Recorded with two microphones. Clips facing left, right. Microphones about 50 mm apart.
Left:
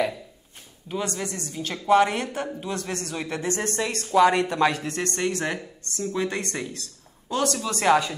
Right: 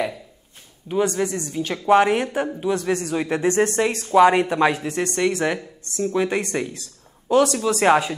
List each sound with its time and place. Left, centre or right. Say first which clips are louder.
0.8 s a woman's voice: right 8 dB; right
2.0 s a woman's voice: right 7 dB; centre